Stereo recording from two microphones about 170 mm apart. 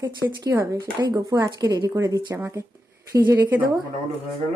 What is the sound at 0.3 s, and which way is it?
Speech, 20° right (ahead or behind).